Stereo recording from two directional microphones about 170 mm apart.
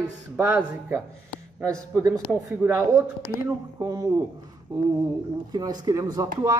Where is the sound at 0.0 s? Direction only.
15° right (ahead or behind).